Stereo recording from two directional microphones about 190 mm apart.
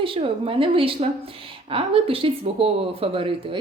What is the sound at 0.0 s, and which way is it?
Speech, 30° right (ahead or behind).